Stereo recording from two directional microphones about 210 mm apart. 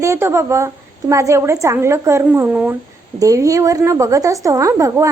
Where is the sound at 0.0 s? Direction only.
15° right (ahead or behind).